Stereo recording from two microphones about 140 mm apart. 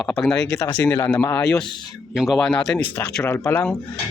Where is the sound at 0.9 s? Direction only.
20° left (ahead or behind).